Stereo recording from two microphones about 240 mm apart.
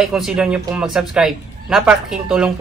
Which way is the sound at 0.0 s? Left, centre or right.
Centre.